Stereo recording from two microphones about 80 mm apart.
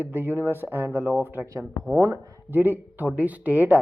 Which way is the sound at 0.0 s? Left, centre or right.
Right.